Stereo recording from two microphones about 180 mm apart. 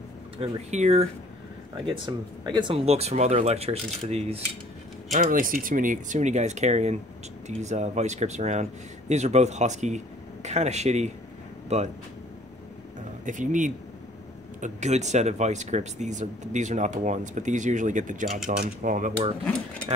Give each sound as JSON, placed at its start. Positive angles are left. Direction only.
{"t": 0.4, "sound": "speech", "side_deg": -35}
{"t": 2.0, "sound": "speech", "side_deg": -25}
{"t": 5.1, "sound": "speech", "side_deg": -45}
{"t": 13.2, "sound": "speech", "side_deg": -45}